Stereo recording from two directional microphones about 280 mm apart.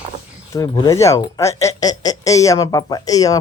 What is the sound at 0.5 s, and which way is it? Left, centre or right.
Speech, centre.